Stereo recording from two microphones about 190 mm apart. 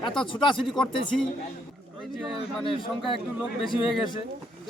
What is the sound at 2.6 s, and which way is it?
Speech, centre (ahead or behind).